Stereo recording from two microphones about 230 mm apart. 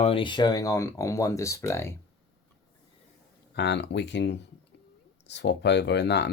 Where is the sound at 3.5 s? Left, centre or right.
Left.